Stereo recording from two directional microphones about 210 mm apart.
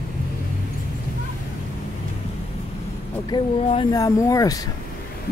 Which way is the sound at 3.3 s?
25° left (ahead or behind).